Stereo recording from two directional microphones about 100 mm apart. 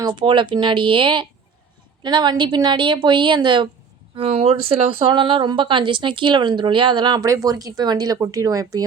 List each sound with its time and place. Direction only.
0.2 s a woman's voice: 55° right (ahead or behind)
4.1 s speech: 65° right (ahead or behind)
5.0 s a woman's voice: 55° right (ahead or behind); by 8.8 s 35° right (ahead or behind)